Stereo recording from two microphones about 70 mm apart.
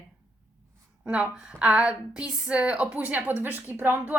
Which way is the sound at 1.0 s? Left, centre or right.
Centre.